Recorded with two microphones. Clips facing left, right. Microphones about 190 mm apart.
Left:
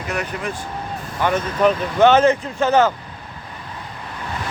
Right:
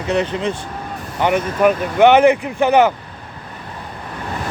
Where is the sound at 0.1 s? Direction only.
25° right (ahead or behind).